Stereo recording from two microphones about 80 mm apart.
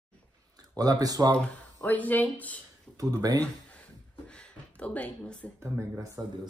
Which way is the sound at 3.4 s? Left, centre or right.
Centre.